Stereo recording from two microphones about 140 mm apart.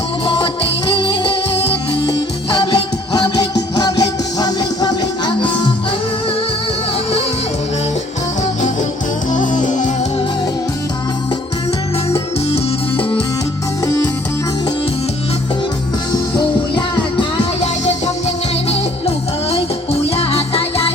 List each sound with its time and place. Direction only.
0.3 s music: 40° left (ahead or behind)
9.3 s music: 65° left (ahead or behind)
13.0 s music: 40° left (ahead or behind)
13.8 s music: 25° left (ahead or behind)
16.7 s music: 35° left (ahead or behind)
18.7 s music: 45° left (ahead or behind)